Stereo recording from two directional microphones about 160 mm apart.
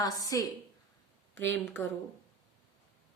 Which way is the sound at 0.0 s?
20° left (ahead or behind).